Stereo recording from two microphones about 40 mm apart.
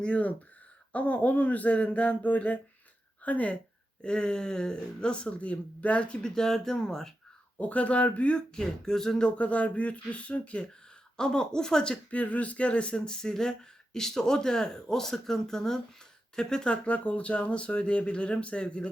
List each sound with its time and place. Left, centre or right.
0.0 s a sound: left
4.0 s speech: left
6.2 s speech: centre
7.6 s a sound: left
8.4 s speech: centre
9.2 s a sound: left
11.2 s speech: centre
12.1 s speech: left; by 16.6 s centre
16.6 s speech: left